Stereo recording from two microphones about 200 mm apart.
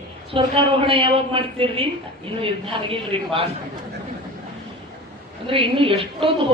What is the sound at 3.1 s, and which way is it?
Speech, 30° right (ahead or behind).